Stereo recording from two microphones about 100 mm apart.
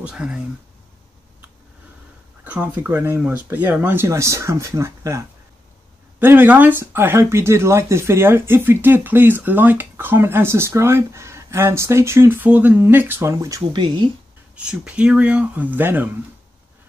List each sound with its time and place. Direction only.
0.0 s speech: 10° right (ahead or behind)
2.4 s speech: 15° right (ahead or behind); by 13.7 s 35° right (ahead or behind)
13.7 s speech: 50° right (ahead or behind)
14.5 s speech: 10° right (ahead or behind)